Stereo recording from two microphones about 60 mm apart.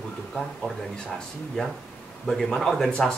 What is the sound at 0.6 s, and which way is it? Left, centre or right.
Speech, left.